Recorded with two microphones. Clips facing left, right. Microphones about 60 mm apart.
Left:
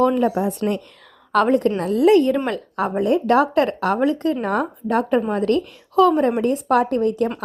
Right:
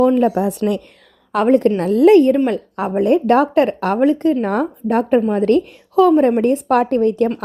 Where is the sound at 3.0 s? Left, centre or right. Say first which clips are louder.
Right 4 dB; right.